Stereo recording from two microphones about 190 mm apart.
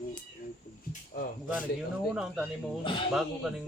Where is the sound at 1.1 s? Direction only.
45° left (ahead or behind).